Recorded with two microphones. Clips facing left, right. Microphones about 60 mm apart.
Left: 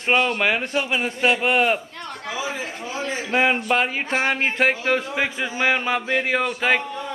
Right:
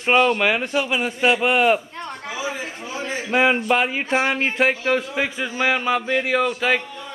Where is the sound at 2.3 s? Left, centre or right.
Centre.